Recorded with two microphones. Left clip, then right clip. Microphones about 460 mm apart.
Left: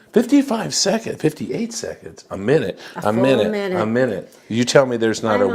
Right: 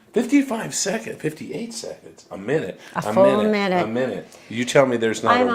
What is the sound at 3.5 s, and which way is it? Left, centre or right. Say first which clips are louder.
Speech: right 1 dB; right.